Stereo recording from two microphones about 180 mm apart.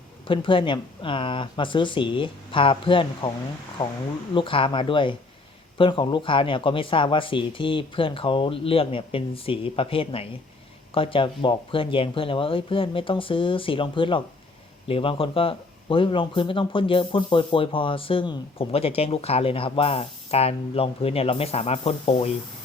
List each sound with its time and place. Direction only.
0.3 s speech: 30° left (ahead or behind)